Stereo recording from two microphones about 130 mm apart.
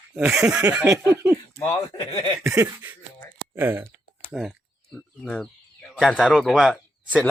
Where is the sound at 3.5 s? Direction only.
20° right (ahead or behind).